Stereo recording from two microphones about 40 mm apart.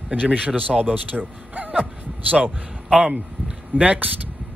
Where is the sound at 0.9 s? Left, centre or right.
Right.